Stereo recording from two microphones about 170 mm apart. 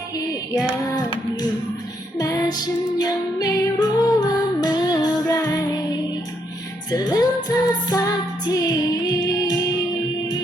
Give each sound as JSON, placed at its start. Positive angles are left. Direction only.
{"t": 2.1, "sound": "music", "side_deg": 20}
{"t": 6.9, "sound": "music", "side_deg": 20}